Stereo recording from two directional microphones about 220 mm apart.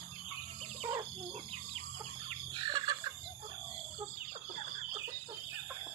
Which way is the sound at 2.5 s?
20° right (ahead or behind).